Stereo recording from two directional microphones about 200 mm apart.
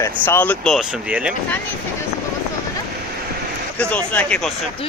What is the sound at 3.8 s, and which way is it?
Speech, 5° left (ahead or behind).